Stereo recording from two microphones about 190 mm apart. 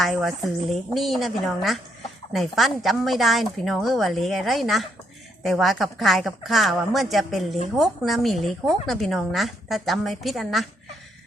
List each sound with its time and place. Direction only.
0.0 s a woman's voice: centre (ahead or behind)